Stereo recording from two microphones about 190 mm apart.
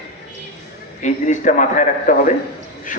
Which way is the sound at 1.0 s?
40° left (ahead or behind).